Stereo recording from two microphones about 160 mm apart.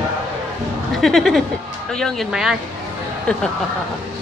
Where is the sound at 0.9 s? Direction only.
Centre (ahead or behind).